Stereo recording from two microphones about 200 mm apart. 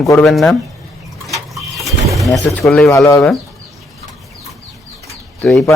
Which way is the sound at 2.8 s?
15° left (ahead or behind).